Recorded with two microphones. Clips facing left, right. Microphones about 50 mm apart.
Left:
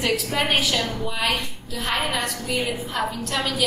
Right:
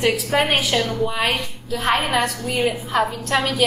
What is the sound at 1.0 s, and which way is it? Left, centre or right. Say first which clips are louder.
Speech: right 5 dB; right.